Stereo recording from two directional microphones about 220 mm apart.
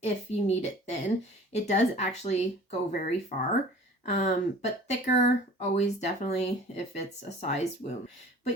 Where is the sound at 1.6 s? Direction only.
30° left (ahead or behind).